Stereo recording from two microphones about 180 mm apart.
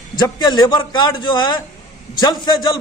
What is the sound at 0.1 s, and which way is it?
A man's voice, 25° left (ahead or behind).